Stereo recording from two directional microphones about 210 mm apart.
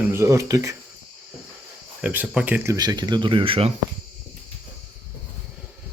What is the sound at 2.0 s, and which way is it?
Speech, 5° right (ahead or behind).